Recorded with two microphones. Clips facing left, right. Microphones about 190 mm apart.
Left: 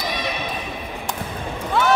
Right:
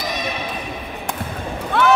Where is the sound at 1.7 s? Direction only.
60° right (ahead or behind).